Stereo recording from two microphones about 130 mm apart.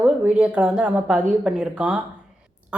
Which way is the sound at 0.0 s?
10° right (ahead or behind).